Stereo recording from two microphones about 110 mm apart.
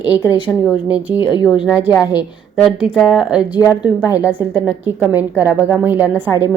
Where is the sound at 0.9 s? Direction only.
10° right (ahead or behind).